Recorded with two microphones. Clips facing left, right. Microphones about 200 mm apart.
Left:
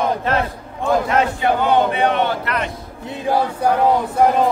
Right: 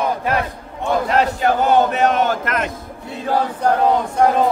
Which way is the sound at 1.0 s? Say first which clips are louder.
Right 1 dB; 40° right (ahead or behind).